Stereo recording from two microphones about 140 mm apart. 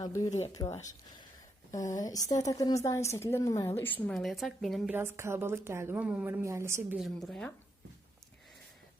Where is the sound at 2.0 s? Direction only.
25° left (ahead or behind).